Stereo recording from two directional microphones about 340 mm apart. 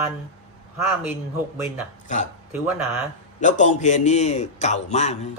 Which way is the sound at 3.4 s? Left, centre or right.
Left.